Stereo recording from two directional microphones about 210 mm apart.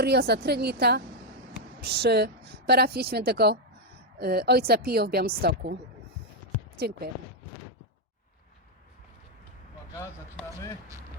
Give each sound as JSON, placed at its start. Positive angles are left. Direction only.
{"t": 0.0, "sound": "speech", "side_deg": -50}